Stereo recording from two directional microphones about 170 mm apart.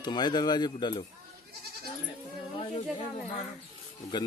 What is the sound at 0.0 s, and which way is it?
Speech, 25° left (ahead or behind).